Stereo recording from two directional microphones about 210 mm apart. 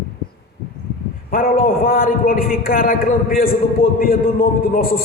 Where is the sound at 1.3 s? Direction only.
45° left (ahead or behind).